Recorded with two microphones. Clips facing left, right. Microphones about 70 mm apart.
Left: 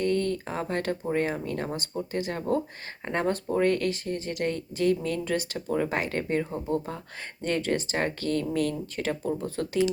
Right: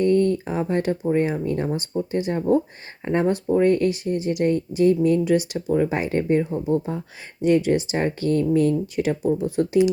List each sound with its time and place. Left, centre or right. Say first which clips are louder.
0.0 s speech: right 8 dB; right; by 5.9 s centre
5.9 s speech: right 7 dB; right